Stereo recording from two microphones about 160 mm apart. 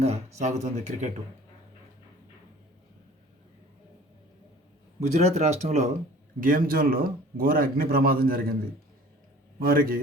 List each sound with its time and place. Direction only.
0.0 s speech: 40° right (ahead or behind)
5.0 s speech: 45° right (ahead or behind)
6.4 s speech: 60° right (ahead or behind)
9.6 s speech: 65° right (ahead or behind)